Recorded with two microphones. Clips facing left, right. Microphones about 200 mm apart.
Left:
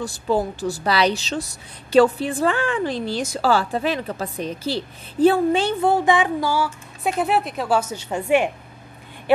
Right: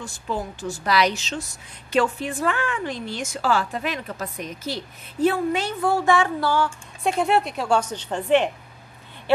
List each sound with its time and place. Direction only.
0.0 s a woman's voice: 35° left (ahead or behind); by 8.5 s 10° left (ahead or behind)